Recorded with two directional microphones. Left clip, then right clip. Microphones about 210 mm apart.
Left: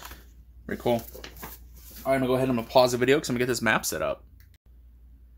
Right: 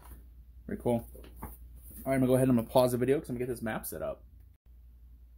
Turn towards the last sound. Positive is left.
turn(degrees=25)  # may be behind; listen again after turning